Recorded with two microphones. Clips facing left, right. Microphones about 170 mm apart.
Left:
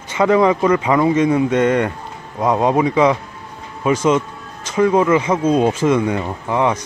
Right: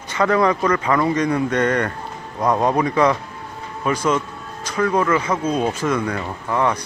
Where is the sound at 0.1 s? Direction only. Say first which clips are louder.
Left 4 dB; 10° left (ahead or behind).